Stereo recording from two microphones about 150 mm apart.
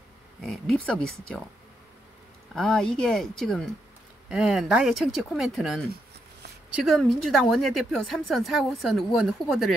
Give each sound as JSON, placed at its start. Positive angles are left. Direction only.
{"t": 0.4, "sound": "speech", "side_deg": 5}
{"t": 2.5, "sound": "speech", "side_deg": 5}